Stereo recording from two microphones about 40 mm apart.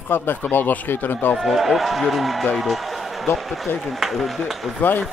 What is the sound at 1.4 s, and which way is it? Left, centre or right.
Speech, centre.